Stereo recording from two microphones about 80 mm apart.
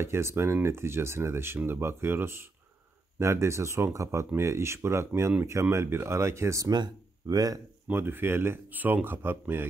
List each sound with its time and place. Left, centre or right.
0.0 s speech: right
6.7 s speech: right
7.9 s speech: right